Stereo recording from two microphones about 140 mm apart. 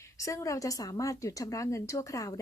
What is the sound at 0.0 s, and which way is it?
A woman's voice, 20° left (ahead or behind).